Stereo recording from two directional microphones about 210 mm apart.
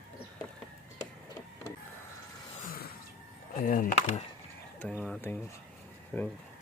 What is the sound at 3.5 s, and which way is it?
Speech, 40° left (ahead or behind).